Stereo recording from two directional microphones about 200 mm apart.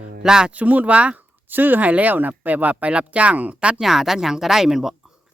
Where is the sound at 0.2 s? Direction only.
5° right (ahead or behind).